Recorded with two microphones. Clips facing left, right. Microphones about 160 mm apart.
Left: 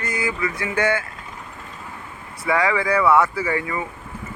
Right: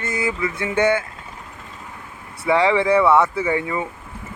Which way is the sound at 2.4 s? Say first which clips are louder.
Right 4 dB; 25° right (ahead or behind).